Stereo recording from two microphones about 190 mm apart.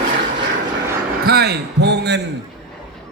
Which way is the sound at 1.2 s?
55° right (ahead or behind).